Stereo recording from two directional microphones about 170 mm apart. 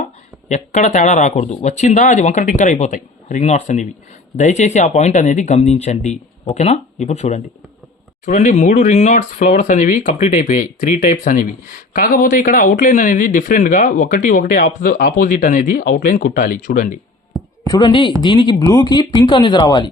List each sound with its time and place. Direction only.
0.4 s speech: 45° left (ahead or behind)
17.7 s speech: 25° left (ahead or behind)